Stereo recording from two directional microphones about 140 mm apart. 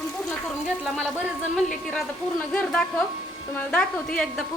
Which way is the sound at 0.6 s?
5° right (ahead or behind).